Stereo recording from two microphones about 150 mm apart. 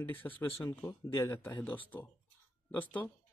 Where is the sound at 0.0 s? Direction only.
10° left (ahead or behind).